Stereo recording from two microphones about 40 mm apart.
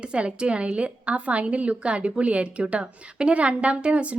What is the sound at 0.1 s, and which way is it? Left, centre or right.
A woman's voice, right.